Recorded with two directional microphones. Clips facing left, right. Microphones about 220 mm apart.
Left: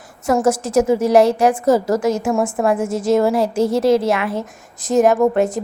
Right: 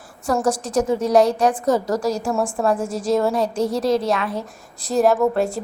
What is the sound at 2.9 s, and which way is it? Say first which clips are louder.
A woman's voice: left 4 dB; 25° left (ahead or behind).